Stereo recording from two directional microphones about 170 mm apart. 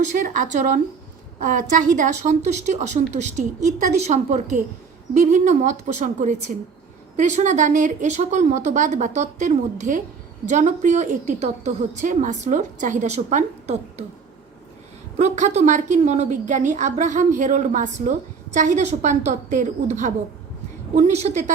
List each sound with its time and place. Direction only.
0.0 s a woman's voice: 45° right (ahead or behind)
15.2 s a woman's voice: 40° right (ahead or behind)